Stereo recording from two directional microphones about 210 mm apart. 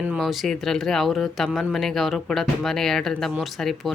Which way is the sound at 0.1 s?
Centre (ahead or behind).